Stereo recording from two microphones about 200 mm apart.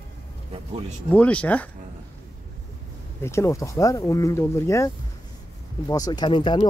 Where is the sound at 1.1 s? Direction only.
5° left (ahead or behind).